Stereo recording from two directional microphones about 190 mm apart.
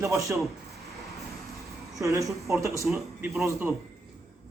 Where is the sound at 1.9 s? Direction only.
15° right (ahead or behind).